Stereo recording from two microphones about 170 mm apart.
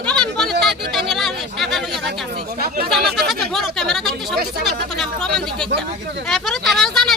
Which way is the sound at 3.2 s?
Centre (ahead or behind).